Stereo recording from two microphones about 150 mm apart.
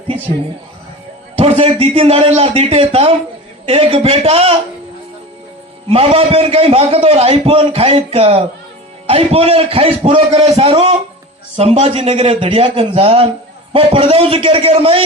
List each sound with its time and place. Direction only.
1.4 s a man's voice: 40° right (ahead or behind)
5.9 s a man's voice: 40° right (ahead or behind)